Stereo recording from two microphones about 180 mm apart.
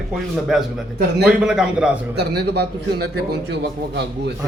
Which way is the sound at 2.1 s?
65° right (ahead or behind).